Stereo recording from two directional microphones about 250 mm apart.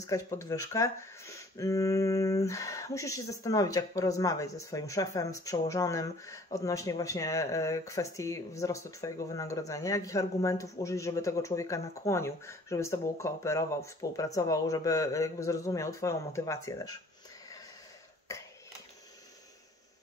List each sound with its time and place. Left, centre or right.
0.0 s speech: centre
18.3 s cough: centre